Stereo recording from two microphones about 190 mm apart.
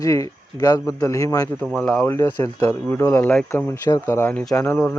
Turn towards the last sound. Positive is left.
turn(degrees=10)  # may be behind; listen again after turning